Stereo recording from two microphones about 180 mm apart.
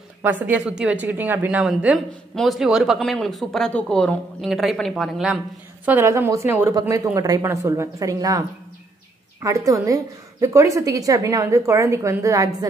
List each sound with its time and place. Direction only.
0.2 s a woman's voice: 10° right (ahead or behind)
5.9 s a woman's voice: 15° right (ahead or behind)